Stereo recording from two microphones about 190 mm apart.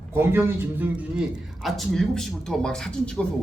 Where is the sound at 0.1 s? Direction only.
10° right (ahead or behind).